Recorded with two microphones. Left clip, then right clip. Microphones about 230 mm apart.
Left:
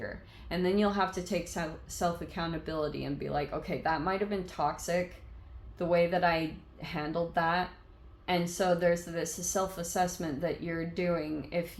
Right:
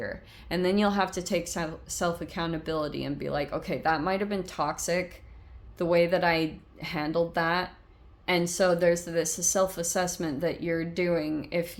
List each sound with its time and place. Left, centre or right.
0.0 s speech: right